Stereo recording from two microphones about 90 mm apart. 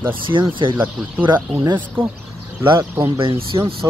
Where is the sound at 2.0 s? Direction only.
75° right (ahead or behind).